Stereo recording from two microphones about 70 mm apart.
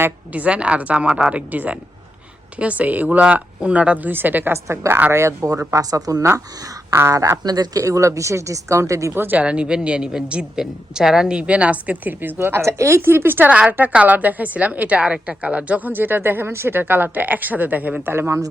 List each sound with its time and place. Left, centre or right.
0.3 s a woman's voice: centre
4.5 s speech: right
9.1 s a woman's voice: right
12.4 s a woman's voice: right